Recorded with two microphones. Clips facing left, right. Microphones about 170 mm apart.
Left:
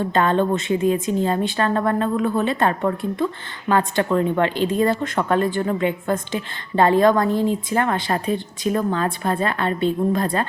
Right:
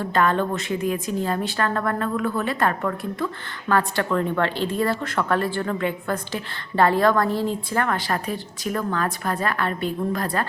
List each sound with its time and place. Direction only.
0.0 s speech: 25° left (ahead or behind)